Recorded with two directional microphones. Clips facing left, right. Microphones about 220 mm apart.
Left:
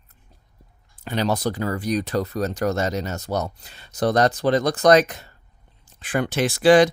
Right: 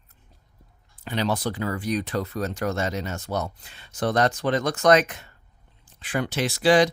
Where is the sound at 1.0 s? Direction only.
45° left (ahead or behind).